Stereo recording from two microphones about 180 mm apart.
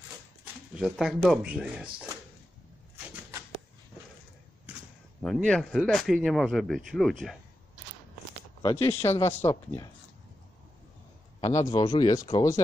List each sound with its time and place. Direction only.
0.7 s speech: 5° right (ahead or behind)
5.2 s speech: 5° left (ahead or behind)
8.6 s speech: 15° left (ahead or behind)
11.4 s speech: 20° left (ahead or behind)